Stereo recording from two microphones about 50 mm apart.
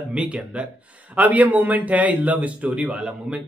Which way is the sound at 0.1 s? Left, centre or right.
Centre.